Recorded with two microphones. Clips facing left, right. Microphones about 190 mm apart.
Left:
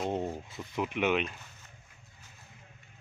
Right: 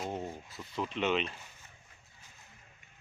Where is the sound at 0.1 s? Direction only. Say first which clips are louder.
Left 6 dB; 30° left (ahead or behind); by 1.2 s 15° left (ahead or behind).